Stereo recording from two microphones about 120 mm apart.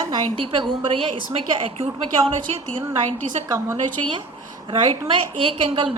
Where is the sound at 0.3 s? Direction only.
45° right (ahead or behind).